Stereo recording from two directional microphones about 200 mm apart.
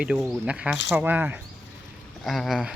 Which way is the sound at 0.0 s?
5° right (ahead or behind).